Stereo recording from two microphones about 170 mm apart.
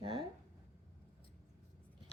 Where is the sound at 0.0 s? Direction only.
30° right (ahead or behind).